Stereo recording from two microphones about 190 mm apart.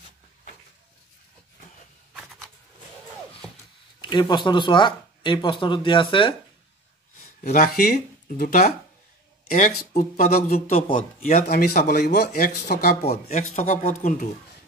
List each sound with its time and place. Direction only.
2.1 s shuffling cards: centre (ahead or behind)
4.0 s speech: 25° left (ahead or behind)
7.5 s speech: 50° left (ahead or behind)
13.3 s speech: 40° left (ahead or behind)